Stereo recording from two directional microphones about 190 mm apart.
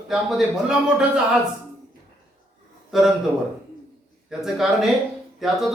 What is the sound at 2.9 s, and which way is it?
Speech, centre (ahead or behind).